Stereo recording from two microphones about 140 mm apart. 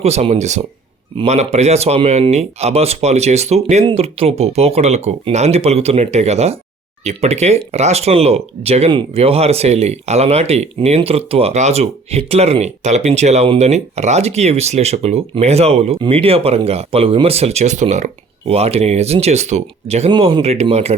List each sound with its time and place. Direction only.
0.0 s speech: 50° right (ahead or behind)
20.1 s speech: 35° right (ahead or behind)